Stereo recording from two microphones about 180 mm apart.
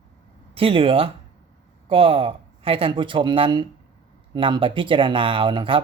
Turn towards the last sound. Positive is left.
turn(degrees=-30)  # may be behind; listen again after turning